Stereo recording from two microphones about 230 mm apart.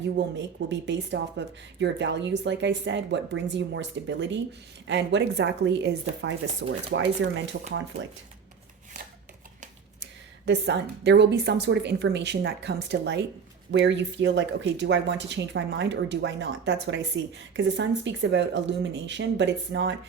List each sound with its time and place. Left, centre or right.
0.3 s speech: right
10.0 s speech: right